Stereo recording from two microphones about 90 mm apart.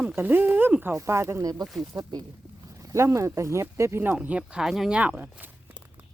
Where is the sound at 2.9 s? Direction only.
35° right (ahead or behind); by 4.9 s 5° right (ahead or behind).